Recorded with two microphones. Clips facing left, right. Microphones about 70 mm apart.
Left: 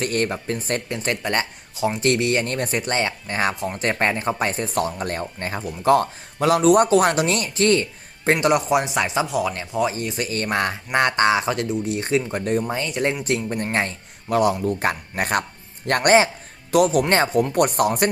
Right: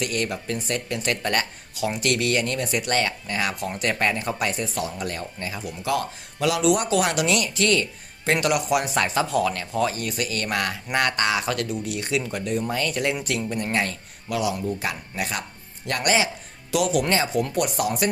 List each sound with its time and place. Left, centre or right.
0.0 s speech: left
12.6 s speech: left
14.3 s speech: left